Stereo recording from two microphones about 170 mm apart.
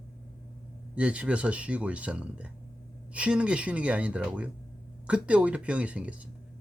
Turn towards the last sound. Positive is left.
turn(degrees=-10)  # may be behind; listen again after turning